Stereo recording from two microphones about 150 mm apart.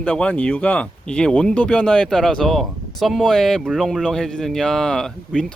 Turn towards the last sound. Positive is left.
turn(degrees=5)  # may be behind; listen again after turning